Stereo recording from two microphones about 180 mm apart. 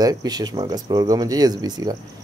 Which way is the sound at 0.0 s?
20° right (ahead or behind).